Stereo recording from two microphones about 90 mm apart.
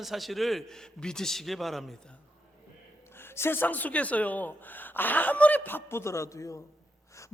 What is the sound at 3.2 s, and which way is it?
Speech, 25° left (ahead or behind).